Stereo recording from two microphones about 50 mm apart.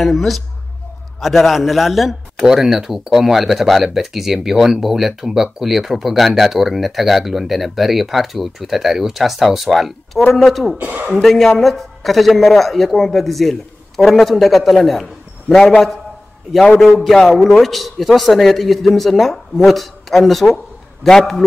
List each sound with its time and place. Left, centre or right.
0.0 s a man's voice: centre
10.8 s speech: right
11.1 s a man's voice: centre
17.0 s a man's voice: centre